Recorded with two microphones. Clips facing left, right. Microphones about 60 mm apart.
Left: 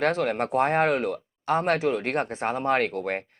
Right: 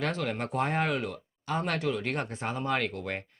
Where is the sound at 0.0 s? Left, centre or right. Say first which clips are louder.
Left 7 dB; left.